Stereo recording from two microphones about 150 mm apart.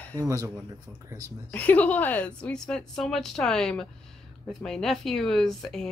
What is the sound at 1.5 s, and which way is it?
A woman's voice, 10° left (ahead or behind).